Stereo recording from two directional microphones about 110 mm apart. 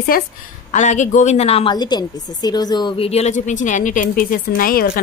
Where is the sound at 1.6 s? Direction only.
40° left (ahead or behind).